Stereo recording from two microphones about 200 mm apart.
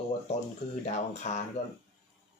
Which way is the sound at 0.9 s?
35° left (ahead or behind).